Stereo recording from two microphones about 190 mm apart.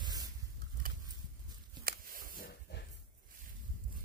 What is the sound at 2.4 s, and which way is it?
Hiss, 50° left (ahead or behind).